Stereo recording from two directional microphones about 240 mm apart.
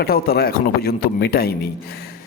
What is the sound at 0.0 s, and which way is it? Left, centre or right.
A man's voice, left.